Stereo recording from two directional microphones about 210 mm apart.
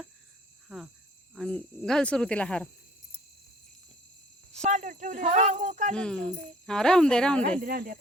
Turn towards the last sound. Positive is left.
turn(degrees=-45)  # may be behind; listen again after turning